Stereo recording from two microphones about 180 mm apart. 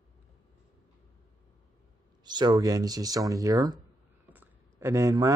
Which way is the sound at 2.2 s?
25° right (ahead or behind).